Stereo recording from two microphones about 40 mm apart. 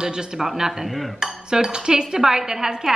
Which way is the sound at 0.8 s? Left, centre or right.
Centre.